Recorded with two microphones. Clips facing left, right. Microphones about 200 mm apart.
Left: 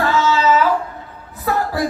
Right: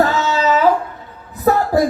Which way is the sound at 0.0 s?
40° right (ahead or behind).